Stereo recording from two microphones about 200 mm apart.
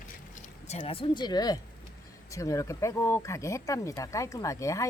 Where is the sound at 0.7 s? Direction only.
30° left (ahead or behind); by 4.9 s 15° left (ahead or behind).